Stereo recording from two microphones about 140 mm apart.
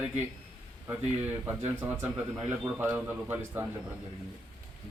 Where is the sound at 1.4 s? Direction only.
15° right (ahead or behind).